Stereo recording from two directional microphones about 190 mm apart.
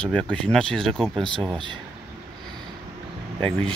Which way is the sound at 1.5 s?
25° right (ahead or behind).